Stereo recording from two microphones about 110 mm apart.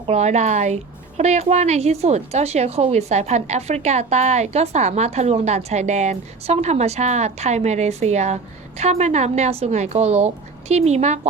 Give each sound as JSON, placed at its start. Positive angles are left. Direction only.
{"t": 0.1, "sound": "a woman's voice", "side_deg": -90}